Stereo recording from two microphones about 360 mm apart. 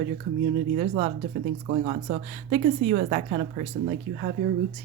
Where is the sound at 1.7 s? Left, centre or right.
Right.